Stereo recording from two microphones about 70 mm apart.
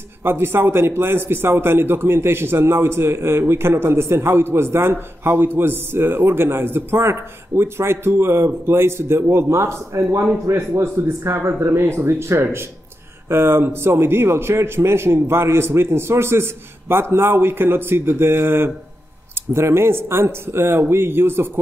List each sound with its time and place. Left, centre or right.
0.2 s a man's voice: right